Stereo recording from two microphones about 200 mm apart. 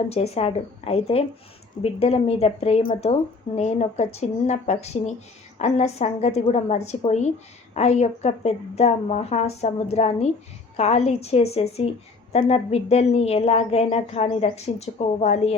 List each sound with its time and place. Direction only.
0.1 s a woman's voice: 30° left (ahead or behind)